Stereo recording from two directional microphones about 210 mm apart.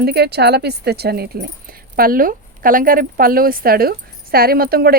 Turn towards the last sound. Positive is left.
turn(degrees=-45)  # may be behind; listen again after turning